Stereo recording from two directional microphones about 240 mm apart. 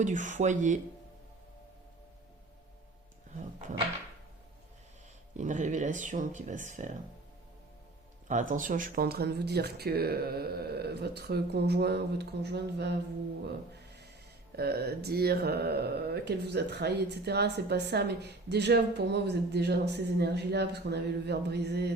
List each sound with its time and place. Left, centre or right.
0.0 s speech: right
5.4 s speech: right
8.3 s speech: right
14.5 s speech: right